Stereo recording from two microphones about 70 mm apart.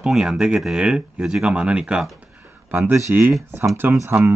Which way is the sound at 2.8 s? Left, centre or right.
Right.